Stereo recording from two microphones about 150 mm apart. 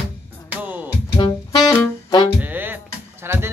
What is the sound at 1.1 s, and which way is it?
Saxophone, 25° left (ahead or behind).